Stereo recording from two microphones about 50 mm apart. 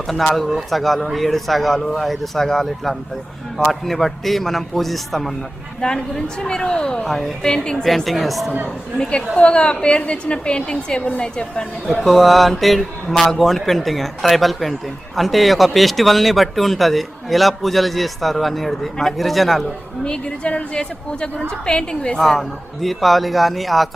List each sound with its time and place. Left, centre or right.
0.1 s speech: centre
5.8 s a woman's voice: centre
7.1 s speech: centre
7.4 s a woman's voice: centre
7.9 s speech: centre
9.0 s a woman's voice: centre
12.0 s speech: centre
20.1 s a woman's voice: left
22.2 s speech: centre